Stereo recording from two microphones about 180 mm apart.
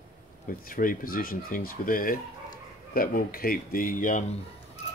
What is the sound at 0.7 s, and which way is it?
Speech, 50° left (ahead or behind).